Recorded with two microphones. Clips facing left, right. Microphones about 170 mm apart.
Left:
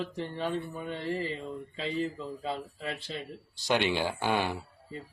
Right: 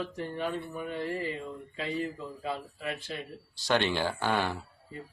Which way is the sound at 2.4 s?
30° left (ahead or behind).